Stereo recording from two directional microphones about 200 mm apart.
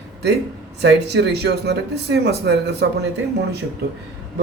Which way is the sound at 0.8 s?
55° right (ahead or behind).